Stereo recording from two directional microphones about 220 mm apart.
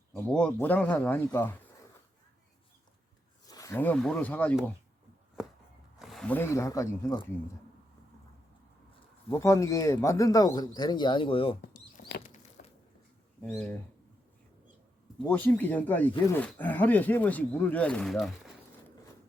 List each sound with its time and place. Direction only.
0.2 s speech: 5° left (ahead or behind)
3.4 s speech: 15° left (ahead or behind)
6.0 s speech: centre (ahead or behind); by 7.3 s 15° left (ahead or behind)
9.3 s speech: 15° left (ahead or behind)
11.7 s a sound: 45° left (ahead or behind)
13.4 s speech: 10° left (ahead or behind)
15.3 s speech: 10° left (ahead or behind)